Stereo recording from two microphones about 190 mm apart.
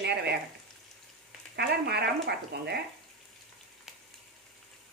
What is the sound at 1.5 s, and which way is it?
Speech, 60° right (ahead or behind).